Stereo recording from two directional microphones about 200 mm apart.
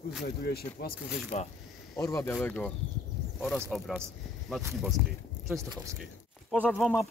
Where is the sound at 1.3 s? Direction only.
35° left (ahead or behind).